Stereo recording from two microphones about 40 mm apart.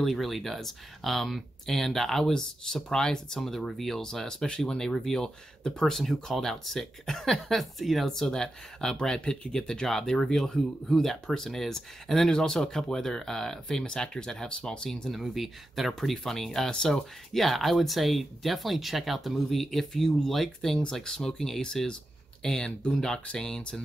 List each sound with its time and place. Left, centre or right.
0.0 s speech: centre
3.3 s speech: centre
8.1 s speech: centre
14.9 s speech: centre
17.4 s speech: centre